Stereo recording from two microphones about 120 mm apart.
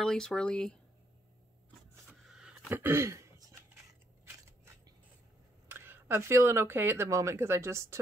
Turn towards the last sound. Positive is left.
turn(degrees=-25)  # may be behind; listen again after turning